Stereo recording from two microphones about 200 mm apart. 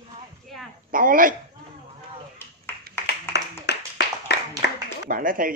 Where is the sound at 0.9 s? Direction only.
45° right (ahead or behind).